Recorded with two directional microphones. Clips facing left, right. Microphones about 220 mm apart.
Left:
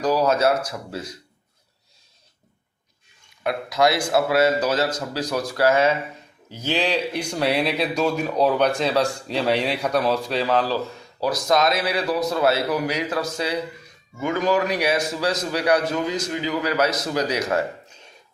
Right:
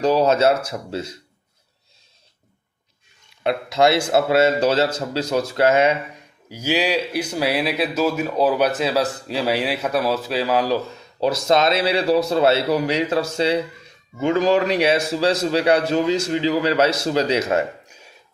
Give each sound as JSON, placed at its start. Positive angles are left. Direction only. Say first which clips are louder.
{"t": 0.0, "sound": "a man's voice", "louder": "right 3 dB", "side_deg": -25}
{"t": 3.4, "sound": "a man's voice", "louder": "right 3 dB", "side_deg": -25}
{"t": 6.5, "sound": "speech", "louder": "right 2 dB", "side_deg": -10}
{"t": 11.2, "sound": "a man's voice", "louder": "right 3 dB", "side_deg": -25}